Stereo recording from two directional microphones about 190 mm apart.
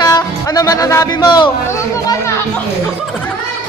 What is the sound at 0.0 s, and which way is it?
Music, 20° left (ahead or behind).